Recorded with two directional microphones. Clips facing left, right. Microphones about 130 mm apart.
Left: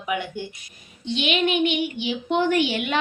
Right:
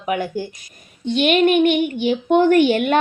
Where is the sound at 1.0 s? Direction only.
50° right (ahead or behind).